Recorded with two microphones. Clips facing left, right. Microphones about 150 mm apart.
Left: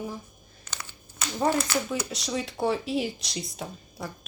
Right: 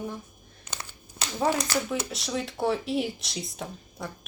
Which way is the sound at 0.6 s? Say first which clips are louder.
Right 1 dB; 20° right (ahead or behind).